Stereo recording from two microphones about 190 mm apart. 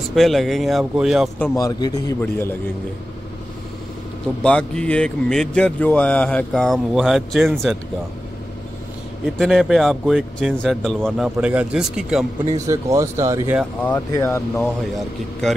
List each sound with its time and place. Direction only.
0.1 s speech: centre (ahead or behind)
1.6 s a man's voice: 20° left (ahead or behind)
4.4 s speech: 5° left (ahead or behind)
9.4 s speech: centre (ahead or behind)
12.5 s speech: 15° right (ahead or behind)
13.8 s a man's voice: 10° left (ahead or behind)
14.6 s speech: centre (ahead or behind)